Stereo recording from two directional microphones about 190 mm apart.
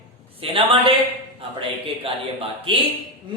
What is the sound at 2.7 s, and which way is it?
Speech, 30° right (ahead or behind).